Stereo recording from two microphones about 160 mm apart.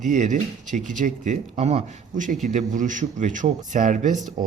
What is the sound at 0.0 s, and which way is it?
Speech, 50° right (ahead or behind).